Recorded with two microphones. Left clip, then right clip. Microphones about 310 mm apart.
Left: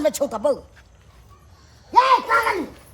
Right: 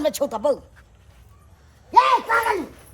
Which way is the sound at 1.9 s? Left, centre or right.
Centre.